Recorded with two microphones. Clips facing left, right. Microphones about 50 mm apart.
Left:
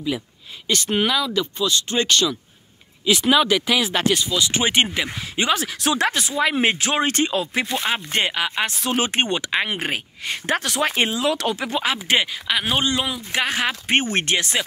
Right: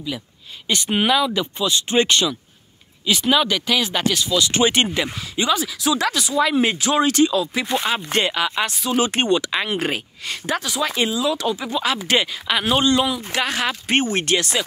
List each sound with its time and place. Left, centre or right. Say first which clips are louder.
0.7 s speech: right 2 dB; centre
3.1 s speech: left 1 dB; centre
4.1 s speech: right 1 dB; centre
5.3 s speech: even; left
6.0 s speech: right 1 dB; left
8.2 s speech: right 2 dB; centre
10.4 s speech: left 1 dB; left
12.0 s speech: even; centre
12.4 s speech: right 2 dB; centre
12.7 s speech: right 4 dB; centre